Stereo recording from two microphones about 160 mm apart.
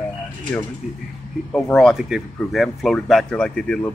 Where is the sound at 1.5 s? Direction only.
5° left (ahead or behind).